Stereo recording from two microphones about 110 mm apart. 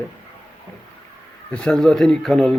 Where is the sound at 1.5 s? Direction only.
10° left (ahead or behind).